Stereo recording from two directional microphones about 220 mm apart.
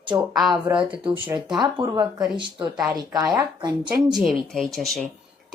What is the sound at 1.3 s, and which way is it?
Speech, 15° right (ahead or behind).